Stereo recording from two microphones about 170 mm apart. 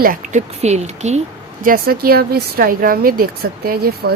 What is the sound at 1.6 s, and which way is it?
Speech, 60° right (ahead or behind).